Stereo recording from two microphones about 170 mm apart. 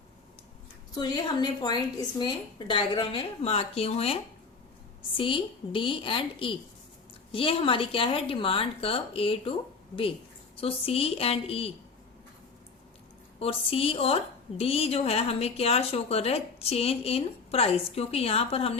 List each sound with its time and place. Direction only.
0.9 s a woman's voice: 25° left (ahead or behind)
13.4 s a woman's voice: 35° left (ahead or behind)